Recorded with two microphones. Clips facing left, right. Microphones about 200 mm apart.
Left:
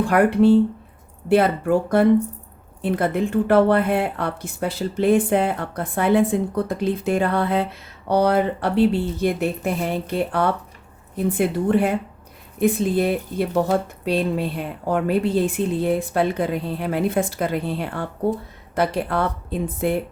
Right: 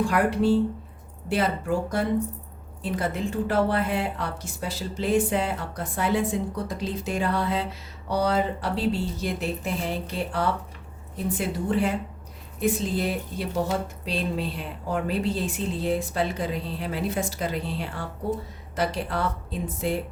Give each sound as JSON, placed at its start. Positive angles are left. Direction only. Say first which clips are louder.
{"t": 0.0, "sound": "speech", "louder": "left 6 dB", "side_deg": 60}